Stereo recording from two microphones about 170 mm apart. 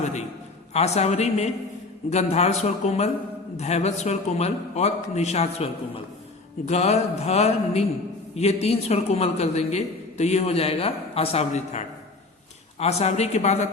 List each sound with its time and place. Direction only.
0.7 s a man's voice: 40° left (ahead or behind)